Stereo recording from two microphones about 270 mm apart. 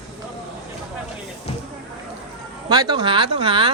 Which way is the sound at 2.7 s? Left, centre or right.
Centre.